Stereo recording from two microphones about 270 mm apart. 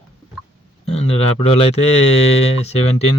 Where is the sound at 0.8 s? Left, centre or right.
Left.